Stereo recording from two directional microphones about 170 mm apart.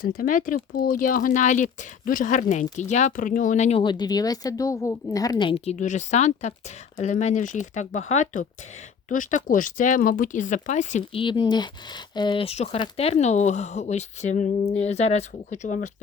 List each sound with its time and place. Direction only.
0.0 s speech: 55° left (ahead or behind)
3.8 s a woman's voice: 25° left (ahead or behind); by 11.0 s 45° left (ahead or behind)
11.1 s speech: 30° left (ahead or behind); by 15.9 s 45° left (ahead or behind)